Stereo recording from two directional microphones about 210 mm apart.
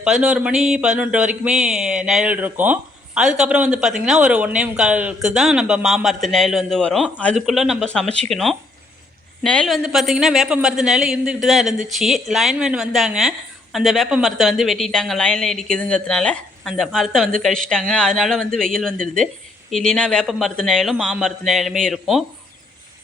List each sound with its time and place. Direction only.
0.0 s a woman's voice: 5° right (ahead or behind)